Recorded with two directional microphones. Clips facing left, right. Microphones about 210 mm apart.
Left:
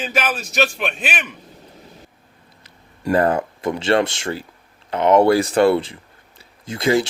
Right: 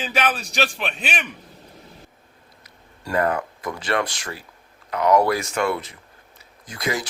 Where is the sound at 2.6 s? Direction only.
30° left (ahead or behind).